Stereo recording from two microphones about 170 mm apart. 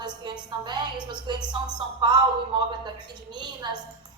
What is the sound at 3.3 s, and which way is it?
Speech, 25° right (ahead or behind).